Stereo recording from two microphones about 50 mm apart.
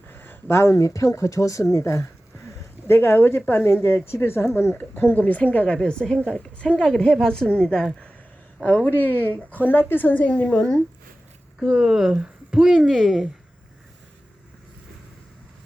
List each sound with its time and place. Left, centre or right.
0.1 s a sound: left
0.5 s speech: left
1.7 s a sound: left
2.9 s speech: left
4.9 s a woman's voice: left; by 7.9 s centre
8.6 s a woman's voice: left
10.2 s a woman's voice: left
11.7 s speech: centre
12.1 s a sound: right
12.5 s speech: centre